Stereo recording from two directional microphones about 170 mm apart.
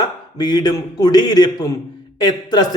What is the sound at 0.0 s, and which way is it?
Speech, 25° left (ahead or behind).